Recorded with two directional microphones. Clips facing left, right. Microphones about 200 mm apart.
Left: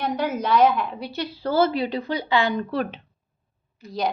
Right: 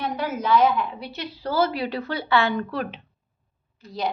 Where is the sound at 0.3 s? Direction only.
40° left (ahead or behind); by 2.7 s 20° left (ahead or behind).